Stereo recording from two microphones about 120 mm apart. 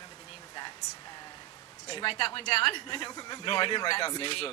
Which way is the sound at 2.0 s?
45° left (ahead or behind).